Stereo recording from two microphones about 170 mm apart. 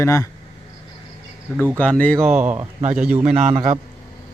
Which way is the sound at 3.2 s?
35° right (ahead or behind).